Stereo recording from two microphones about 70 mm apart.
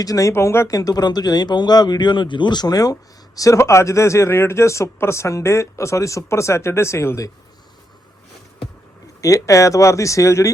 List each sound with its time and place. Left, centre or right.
0.0 s speech: left
0.7 s a man's voice: left
3.6 s speech: left
9.2 s speech: left